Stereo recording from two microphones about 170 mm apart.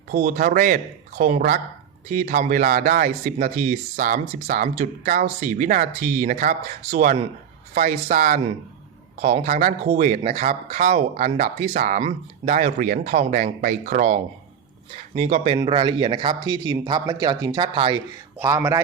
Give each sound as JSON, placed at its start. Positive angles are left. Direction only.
{"t": 0.2, "sound": "speech", "side_deg": -50}
{"t": 15.5, "sound": "speech", "side_deg": -25}
{"t": 18.3, "sound": "speech", "side_deg": -15}